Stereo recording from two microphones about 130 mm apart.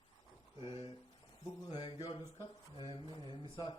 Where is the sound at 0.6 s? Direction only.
35° left (ahead or behind).